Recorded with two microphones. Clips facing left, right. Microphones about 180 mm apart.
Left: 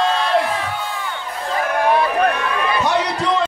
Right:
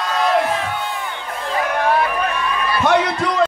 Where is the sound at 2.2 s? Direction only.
65° left (ahead or behind).